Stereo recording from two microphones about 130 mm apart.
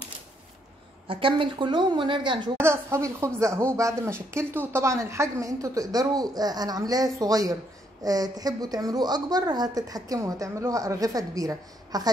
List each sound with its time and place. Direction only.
1.0 s a woman's voice: 40° right (ahead or behind)
2.5 s a woman's voice: 20° right (ahead or behind)